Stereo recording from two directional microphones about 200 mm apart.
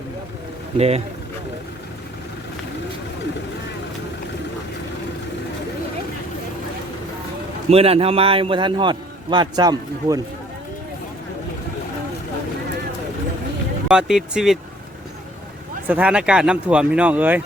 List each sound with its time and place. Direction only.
0.8 s speech: 30° right (ahead or behind)
7.7 s a man's voice: 30° right (ahead or behind)
13.8 s speech: centre (ahead or behind)
15.9 s speech: 5° right (ahead or behind)